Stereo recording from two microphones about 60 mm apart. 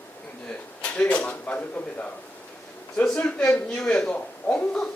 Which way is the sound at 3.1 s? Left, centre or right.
Left.